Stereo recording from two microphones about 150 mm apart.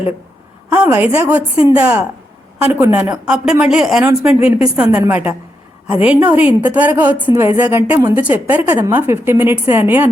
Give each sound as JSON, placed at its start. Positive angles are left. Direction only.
{"t": 0.7, "sound": "a woman's voice", "side_deg": -10}